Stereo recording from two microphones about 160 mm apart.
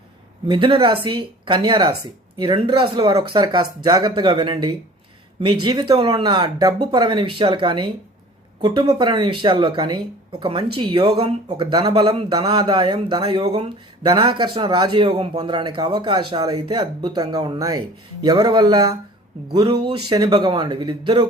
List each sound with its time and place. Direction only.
0.4 s a man's voice: 30° right (ahead or behind)
11.6 s a man's voice: 25° right (ahead or behind)